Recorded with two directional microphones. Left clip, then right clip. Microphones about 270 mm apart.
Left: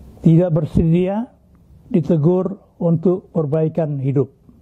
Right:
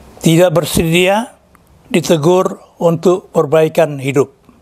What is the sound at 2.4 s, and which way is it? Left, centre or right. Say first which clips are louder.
Speech: right 8 dB; right.